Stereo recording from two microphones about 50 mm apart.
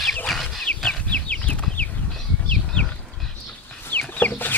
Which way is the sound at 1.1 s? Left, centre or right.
Left.